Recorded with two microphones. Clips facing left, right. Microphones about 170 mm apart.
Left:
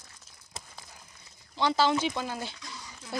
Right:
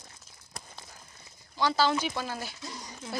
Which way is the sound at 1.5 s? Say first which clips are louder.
Left 1 dB; 20° left (ahead or behind).